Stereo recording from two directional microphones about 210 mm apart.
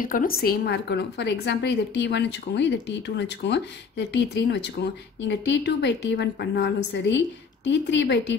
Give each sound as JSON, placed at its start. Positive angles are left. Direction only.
{"t": 0.0, "sound": "a woman's voice", "side_deg": 40}